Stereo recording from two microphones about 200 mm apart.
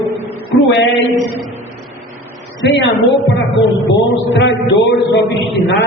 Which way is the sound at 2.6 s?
65° left (ahead or behind).